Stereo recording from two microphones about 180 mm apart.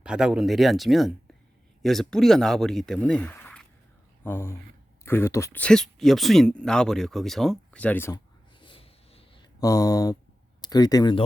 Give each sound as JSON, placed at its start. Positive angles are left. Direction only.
{"t": 0.0, "sound": "speech", "side_deg": -5}
{"t": 8.5, "sound": "a sound", "side_deg": 30}
{"t": 10.6, "sound": "speech", "side_deg": 20}